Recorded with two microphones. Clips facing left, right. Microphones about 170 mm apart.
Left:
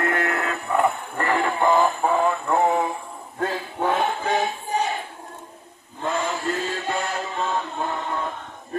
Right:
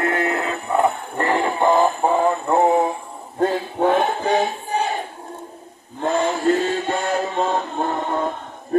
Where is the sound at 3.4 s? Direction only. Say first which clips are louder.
Right 6 dB; 25° right (ahead or behind).